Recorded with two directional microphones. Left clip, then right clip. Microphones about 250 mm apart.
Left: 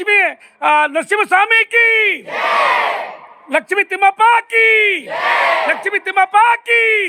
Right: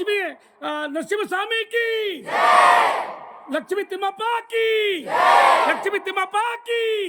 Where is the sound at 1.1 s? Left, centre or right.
Centre.